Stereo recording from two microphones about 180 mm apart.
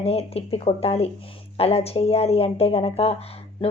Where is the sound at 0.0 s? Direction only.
35° left (ahead or behind).